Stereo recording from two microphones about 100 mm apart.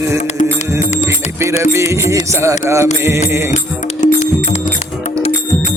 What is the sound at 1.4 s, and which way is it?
Music, 25° right (ahead or behind).